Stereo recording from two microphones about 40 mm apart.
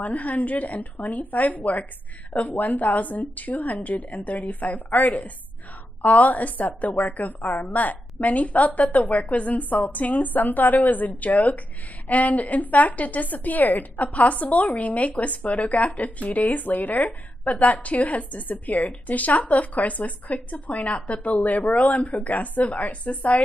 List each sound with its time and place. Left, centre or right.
0.0 s a woman's voice: left